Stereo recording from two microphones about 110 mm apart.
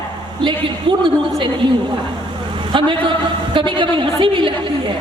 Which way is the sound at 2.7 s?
45° right (ahead or behind).